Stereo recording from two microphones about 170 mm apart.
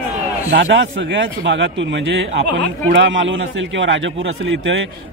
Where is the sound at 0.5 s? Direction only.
90° right.